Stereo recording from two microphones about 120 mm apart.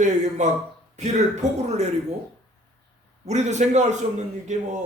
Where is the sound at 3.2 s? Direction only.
70° right (ahead or behind).